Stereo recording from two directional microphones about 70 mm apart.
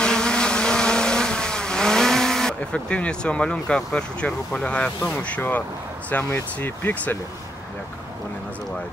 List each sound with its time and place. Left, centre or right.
0.0 s vehicle: centre
5.1 s speech: left